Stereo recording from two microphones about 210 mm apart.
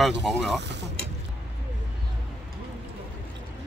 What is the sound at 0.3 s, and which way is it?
Speech, centre (ahead or behind).